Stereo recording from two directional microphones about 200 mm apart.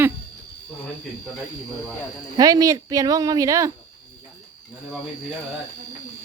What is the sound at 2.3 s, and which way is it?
Speech, 15° right (ahead or behind).